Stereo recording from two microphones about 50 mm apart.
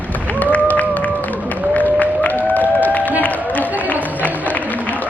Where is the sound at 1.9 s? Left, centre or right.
Left.